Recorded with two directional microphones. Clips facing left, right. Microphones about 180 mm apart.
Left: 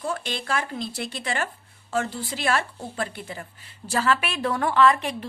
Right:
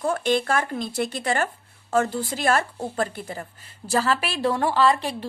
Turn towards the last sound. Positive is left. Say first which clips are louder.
# left 1 dB
turn(degrees=-35)  # may be behind; listen again after turning